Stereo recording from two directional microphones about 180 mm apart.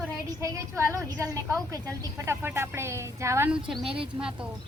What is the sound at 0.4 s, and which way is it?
A woman's voice, 15° right (ahead or behind).